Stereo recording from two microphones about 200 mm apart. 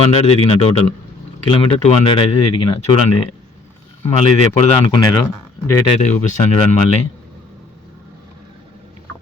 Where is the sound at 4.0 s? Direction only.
35° left (ahead or behind).